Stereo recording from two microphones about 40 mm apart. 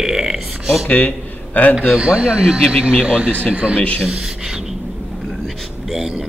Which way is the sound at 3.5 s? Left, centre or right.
Right.